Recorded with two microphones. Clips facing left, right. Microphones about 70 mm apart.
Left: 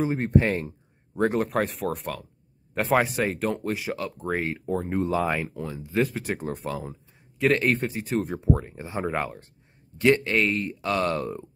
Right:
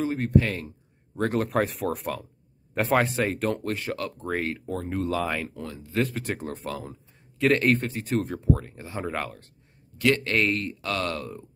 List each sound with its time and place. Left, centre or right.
0.2 s speech: left
1.2 s speech: centre
8.6 s speech: centre
9.0 s speech: centre
9.9 s speech: left
10.2 s speech: centre
10.7 s speech: centre
11.1 s speech: left